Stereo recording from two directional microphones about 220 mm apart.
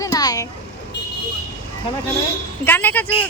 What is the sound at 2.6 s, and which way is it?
Speech, 10° left (ahead or behind).